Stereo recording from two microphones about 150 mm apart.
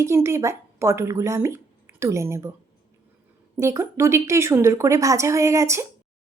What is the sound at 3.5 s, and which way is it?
A woman's voice, 20° right (ahead or behind).